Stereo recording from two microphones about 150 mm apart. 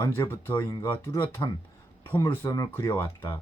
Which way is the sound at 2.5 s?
20° left (ahead or behind).